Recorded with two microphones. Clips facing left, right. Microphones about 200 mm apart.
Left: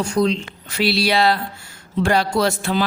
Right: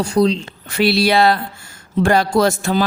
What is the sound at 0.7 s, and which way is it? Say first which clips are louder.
Music: right 4 dB; 55° right (ahead or behind).